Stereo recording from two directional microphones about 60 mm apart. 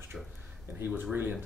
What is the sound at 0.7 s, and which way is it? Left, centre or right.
Speech, right.